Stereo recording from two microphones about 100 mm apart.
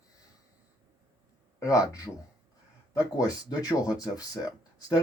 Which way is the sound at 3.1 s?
40° left (ahead or behind).